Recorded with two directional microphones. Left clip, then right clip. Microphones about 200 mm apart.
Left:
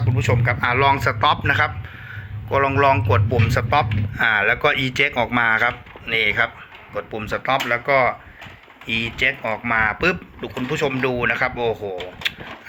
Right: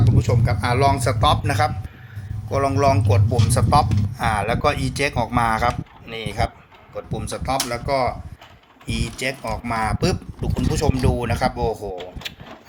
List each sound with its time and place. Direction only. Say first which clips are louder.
0.2 s a man's voice: left 7 dB; 5° right (ahead or behind)
11.7 s a man's voice: left 2 dB; centre (ahead or behind)